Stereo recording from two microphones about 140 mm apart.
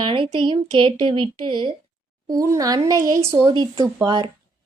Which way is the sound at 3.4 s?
35° right (ahead or behind).